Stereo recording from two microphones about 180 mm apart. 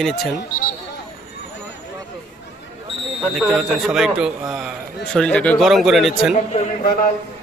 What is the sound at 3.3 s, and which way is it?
A man's voice, centre (ahead or behind).